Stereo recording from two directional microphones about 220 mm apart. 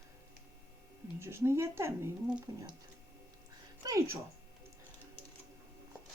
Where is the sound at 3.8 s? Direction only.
15° right (ahead or behind).